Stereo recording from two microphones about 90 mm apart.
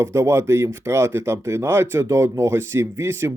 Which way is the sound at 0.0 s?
30° right (ahead or behind).